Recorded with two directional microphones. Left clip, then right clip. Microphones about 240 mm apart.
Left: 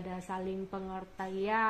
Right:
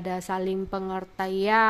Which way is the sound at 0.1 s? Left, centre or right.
Right.